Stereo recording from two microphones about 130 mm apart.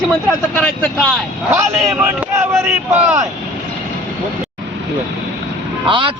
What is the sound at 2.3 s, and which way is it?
Speech, 20° right (ahead or behind).